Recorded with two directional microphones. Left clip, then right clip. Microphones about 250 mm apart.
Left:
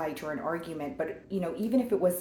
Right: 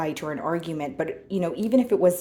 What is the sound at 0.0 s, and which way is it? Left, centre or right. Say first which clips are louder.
Speech: right 5 dB; right.